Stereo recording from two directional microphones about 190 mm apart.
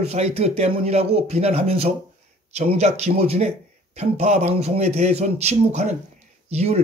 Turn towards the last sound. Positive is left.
turn(degrees=-35)  # may be behind; listen again after turning